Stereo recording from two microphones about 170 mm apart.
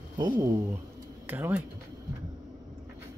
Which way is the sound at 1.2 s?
10° right (ahead or behind).